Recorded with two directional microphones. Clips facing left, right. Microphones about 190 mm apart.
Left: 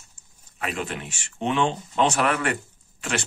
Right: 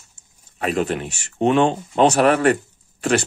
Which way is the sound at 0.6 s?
35° right (ahead or behind).